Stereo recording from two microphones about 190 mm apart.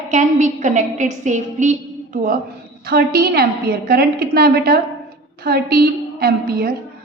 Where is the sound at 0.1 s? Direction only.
40° right (ahead or behind).